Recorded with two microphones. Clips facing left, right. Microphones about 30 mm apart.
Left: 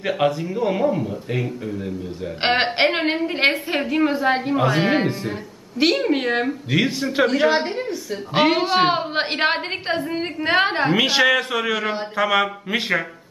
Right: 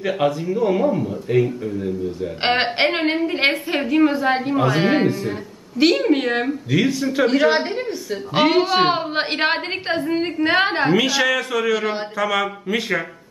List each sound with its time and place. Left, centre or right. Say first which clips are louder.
0.2 s a woman's voice: right 1 dB; centre
6.7 s a man's voice: right 3 dB; left
7.3 s a woman's voice: right 1 dB; centre
11.0 s a man's voice: left 1 dB; left